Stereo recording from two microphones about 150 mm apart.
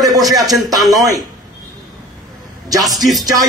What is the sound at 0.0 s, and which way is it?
Speech, 25° right (ahead or behind).